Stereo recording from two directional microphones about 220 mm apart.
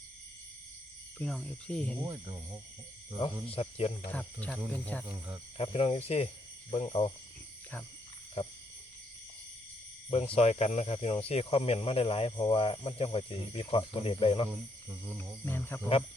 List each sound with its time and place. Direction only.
1.2 s speech: 5° left (ahead or behind)
3.2 s speech: 25° left (ahead or behind)
4.1 s speech: 5° left (ahead or behind)
5.5 s speech: 25° left (ahead or behind)
10.1 s speech: 25° left (ahead or behind)
15.2 s speech: 10° left (ahead or behind)